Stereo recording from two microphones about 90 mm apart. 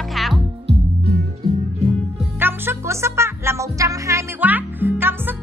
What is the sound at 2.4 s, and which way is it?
Speech, 25° right (ahead or behind).